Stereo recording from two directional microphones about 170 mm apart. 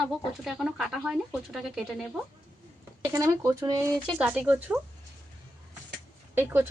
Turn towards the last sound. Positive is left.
turn(degrees=-10)  # may be behind; listen again after turning